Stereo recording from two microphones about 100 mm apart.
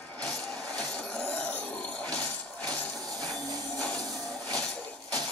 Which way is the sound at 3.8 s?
10° left (ahead or behind).